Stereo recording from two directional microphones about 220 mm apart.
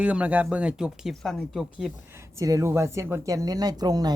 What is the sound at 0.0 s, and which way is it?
Speech, 5° right (ahead or behind).